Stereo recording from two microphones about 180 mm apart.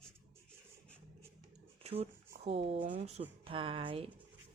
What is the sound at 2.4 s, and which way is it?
Speech, 35° right (ahead or behind).